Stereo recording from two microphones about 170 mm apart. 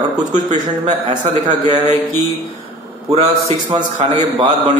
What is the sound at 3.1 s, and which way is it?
A man's voice, 35° right (ahead or behind).